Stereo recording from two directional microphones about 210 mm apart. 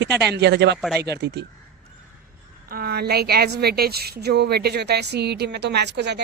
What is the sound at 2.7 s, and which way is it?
A woman's voice, 45° right (ahead or behind).